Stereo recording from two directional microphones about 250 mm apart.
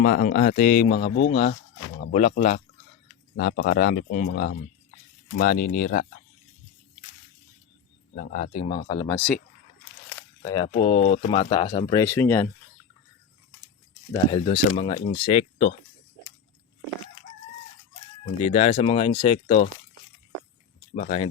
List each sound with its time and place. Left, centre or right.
0.0 s speech: left
1.1 s speech: left
2.0 s speech: left
8.1 s speech: left
9.1 s speech: centre
10.2 s speech: centre
14.1 s speech: left
18.4 s speech: left
20.9 s speech: left